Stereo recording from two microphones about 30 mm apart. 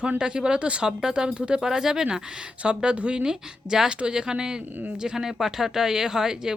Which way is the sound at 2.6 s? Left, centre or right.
Right.